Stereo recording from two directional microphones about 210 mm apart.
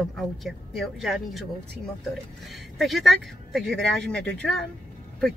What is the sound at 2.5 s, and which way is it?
Speech, centre (ahead or behind).